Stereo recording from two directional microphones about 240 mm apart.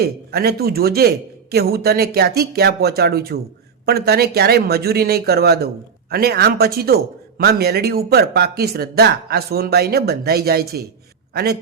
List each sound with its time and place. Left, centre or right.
0.0 s speech: right